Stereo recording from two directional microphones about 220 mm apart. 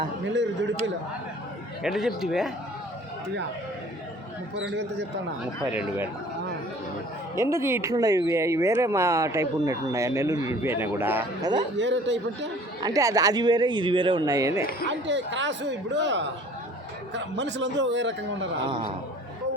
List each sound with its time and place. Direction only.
1.8 s speech: centre (ahead or behind)
4.7 s speech: 55° right (ahead or behind)
7.3 s speech: 15° right (ahead or behind)
11.8 s speech: 55° right (ahead or behind)
12.8 s speech: 15° right (ahead or behind)
14.8 s speech: 55° right (ahead or behind)